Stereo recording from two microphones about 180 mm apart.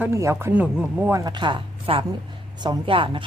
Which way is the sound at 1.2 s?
25° right (ahead or behind).